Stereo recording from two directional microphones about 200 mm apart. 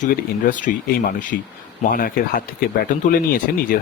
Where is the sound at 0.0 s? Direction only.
40° left (ahead or behind).